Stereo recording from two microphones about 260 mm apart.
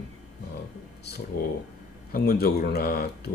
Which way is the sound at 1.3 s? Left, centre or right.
Left.